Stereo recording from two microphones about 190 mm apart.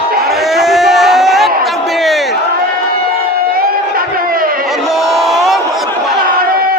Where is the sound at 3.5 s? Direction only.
50° right (ahead or behind).